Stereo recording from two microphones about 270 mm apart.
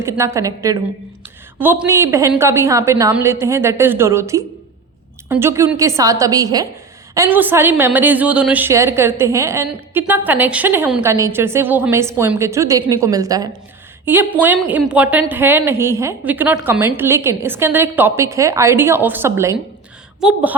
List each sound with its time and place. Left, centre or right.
0.0 s a woman's voice: centre